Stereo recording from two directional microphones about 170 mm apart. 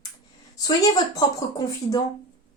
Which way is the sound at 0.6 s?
25° left (ahead or behind).